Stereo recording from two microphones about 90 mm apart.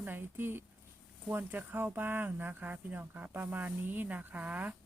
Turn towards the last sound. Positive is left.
turn(degrees=-20)  # may be behind; listen again after turning